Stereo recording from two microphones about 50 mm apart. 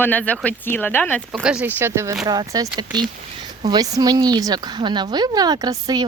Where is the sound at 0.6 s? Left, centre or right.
Left.